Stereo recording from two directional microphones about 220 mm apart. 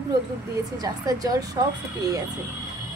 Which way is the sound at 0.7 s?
15° right (ahead or behind).